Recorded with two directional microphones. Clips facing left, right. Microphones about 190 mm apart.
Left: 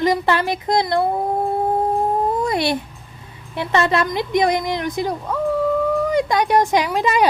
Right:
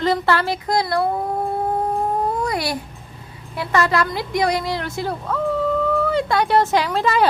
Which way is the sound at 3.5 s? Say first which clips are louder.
Left 1 dB; 25° left (ahead or behind).